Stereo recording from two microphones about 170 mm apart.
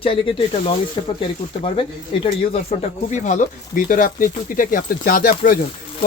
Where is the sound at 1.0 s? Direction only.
25° left (ahead or behind).